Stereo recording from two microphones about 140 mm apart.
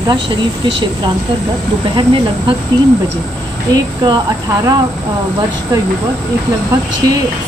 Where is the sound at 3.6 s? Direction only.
30° right (ahead or behind).